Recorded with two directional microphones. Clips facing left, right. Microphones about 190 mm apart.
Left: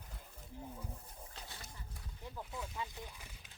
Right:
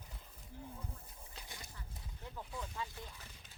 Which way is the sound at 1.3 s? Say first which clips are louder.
Right 1 dB; 15° right (ahead or behind).